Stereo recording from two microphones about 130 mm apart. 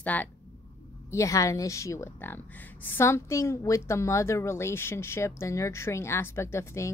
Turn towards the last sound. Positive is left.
turn(degrees=20)  # may be behind; listen again after turning